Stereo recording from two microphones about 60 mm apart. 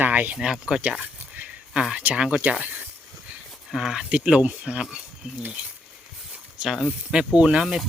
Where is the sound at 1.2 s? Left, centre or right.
Right.